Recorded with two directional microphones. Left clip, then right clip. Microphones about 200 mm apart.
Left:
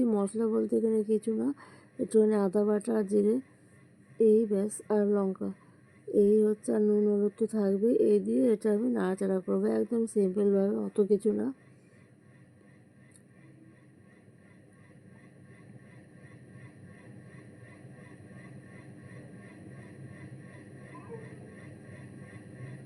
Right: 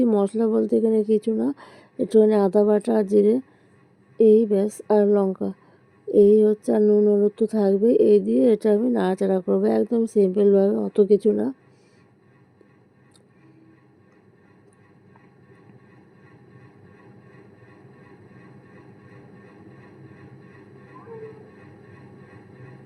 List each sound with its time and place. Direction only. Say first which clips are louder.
0.0 s speech: right 9 dB; 25° right (ahead or behind)